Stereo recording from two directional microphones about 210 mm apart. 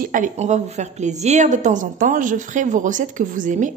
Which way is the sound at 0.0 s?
40° right (ahead or behind).